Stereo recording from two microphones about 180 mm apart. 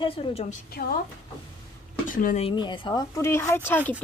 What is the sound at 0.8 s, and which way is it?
Speech, 55° left (ahead or behind).